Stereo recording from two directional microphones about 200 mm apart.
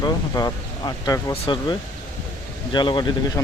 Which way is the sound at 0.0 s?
20° left (ahead or behind).